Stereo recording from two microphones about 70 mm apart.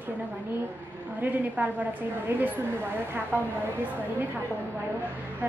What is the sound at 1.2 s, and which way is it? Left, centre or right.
A woman's voice, right.